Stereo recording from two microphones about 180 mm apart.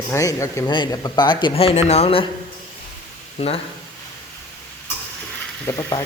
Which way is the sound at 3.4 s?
35° left (ahead or behind).